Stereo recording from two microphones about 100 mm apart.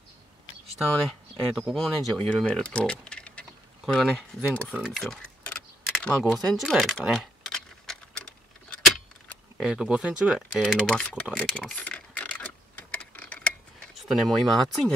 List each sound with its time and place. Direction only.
1.5 s speech: centre (ahead or behind)
4.7 s typing: centre (ahead or behind)
9.6 s speech: 5° right (ahead or behind)
10.6 s speech: 10° left (ahead or behind)
11.3 s a sound: 10° left (ahead or behind)
12.9 s tick-tock: 15° left (ahead or behind)
13.9 s speech: centre (ahead or behind)